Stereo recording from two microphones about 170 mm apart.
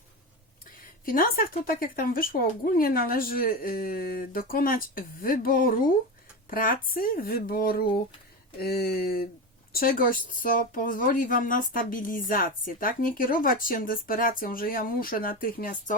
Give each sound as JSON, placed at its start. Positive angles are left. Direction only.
{"t": 0.6, "sound": "speech", "side_deg": 55}